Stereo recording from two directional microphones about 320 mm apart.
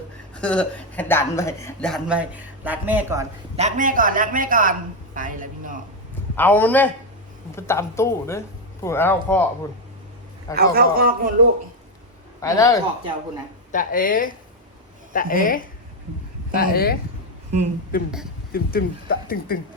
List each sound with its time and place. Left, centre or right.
0.4 s a woman's voice: centre
3.5 s a man's voice: right
6.3 s a woman's voice: centre
10.5 s a man's voice: right
12.4 s speech: centre
13.7 s speech: left